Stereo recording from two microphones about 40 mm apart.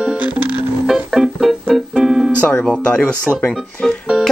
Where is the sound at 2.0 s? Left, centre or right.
Centre.